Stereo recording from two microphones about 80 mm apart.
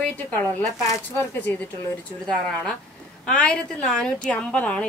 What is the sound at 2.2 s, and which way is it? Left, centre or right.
A woman's voice, centre.